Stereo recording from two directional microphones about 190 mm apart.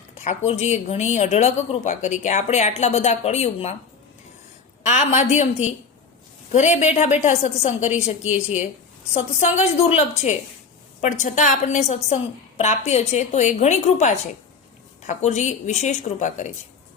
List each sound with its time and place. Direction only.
0.3 s a woman's voice: 35° left (ahead or behind)
4.9 s a woman's voice: 35° left (ahead or behind)
9.1 s a woman's voice: 35° left (ahead or behind)